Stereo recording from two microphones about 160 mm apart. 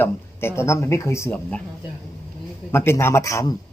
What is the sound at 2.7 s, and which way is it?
Speech, 15° left (ahead or behind).